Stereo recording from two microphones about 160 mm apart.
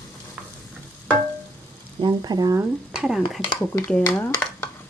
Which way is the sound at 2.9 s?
5° right (ahead or behind).